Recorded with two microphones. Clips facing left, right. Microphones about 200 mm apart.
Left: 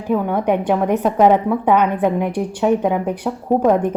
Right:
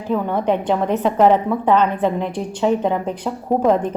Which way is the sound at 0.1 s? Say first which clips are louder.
Left 2 dB; 10° left (ahead or behind).